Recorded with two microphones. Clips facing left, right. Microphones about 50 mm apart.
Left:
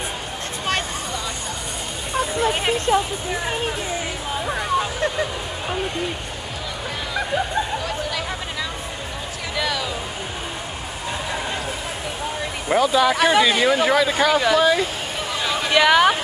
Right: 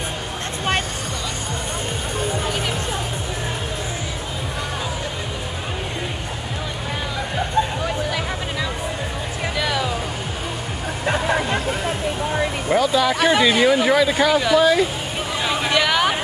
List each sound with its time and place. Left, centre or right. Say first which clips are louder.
2.5 s a sound: left 5 dB; left
9.6 s music: right 1 dB; centre
11.1 s music: right 7 dB; right
12.6 s speech: left 2 dB; centre
15.4 s a sound: right 2 dB; centre
15.7 s vehicle: left 5 dB; centre